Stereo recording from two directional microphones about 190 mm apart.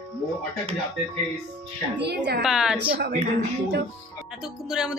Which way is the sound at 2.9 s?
50° right (ahead or behind).